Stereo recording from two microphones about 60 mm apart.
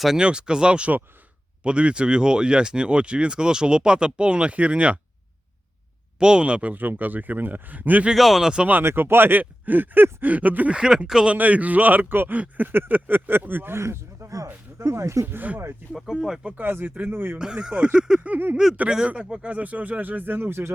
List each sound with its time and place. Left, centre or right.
0.2 s speech: centre
6.1 s speech: centre
8.1 s speech: centre
8.5 s speech: right
8.8 s speech: right
10.8 s speech: centre
11.3 s speech: right
13.7 s speech: right
15.3 s speech: right
16.2 s speech: centre
16.6 s speech: right
17.3 s speech: centre
18.5 s speech: centre; by 20.7 s right